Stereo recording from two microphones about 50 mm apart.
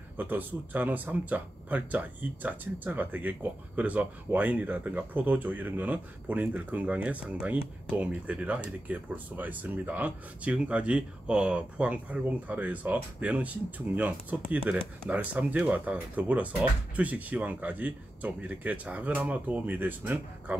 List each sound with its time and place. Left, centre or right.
0.2 s speech: right